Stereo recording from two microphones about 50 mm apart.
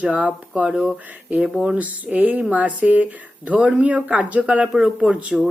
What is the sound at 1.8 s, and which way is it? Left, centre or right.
Speech, right.